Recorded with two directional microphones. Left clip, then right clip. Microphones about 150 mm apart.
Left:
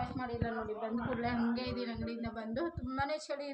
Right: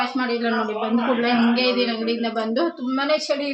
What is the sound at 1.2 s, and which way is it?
A woman's voice, 10° right (ahead or behind).